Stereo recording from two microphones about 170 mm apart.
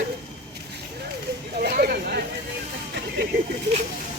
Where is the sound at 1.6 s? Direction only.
65° right (ahead or behind).